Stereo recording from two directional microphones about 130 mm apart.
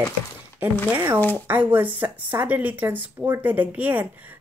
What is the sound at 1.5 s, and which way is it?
A woman's voice, 15° right (ahead or behind).